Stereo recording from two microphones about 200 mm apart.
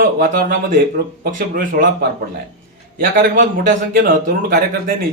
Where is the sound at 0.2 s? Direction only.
45° right (ahead or behind).